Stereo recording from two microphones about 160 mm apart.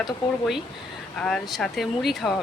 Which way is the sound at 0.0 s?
Centre (ahead or behind).